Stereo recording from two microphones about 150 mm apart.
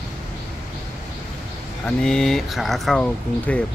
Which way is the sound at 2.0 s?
5° left (ahead or behind).